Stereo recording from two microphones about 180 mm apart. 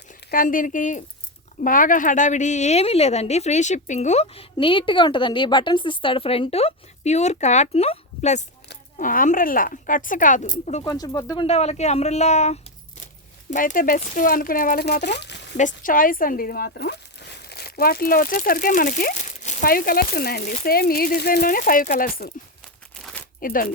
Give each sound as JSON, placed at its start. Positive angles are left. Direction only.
{"t": 0.3, "sound": "a woman's voice", "side_deg": 50}
{"t": 10.8, "sound": "a woman's voice", "side_deg": 20}
{"t": 11.4, "sound": "a woman's voice", "side_deg": 35}
{"t": 15.5, "sound": "speech", "side_deg": 45}
{"t": 23.4, "sound": "speech", "side_deg": 50}